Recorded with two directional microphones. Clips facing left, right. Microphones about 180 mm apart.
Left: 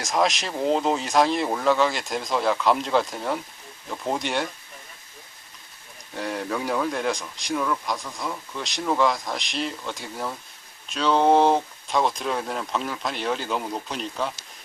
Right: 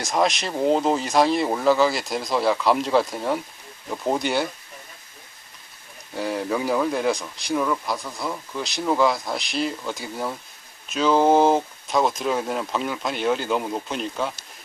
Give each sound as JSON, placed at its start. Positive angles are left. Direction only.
{"t": 0.0, "sound": "speech", "side_deg": 0}
{"t": 6.1, "sound": "speech", "side_deg": 0}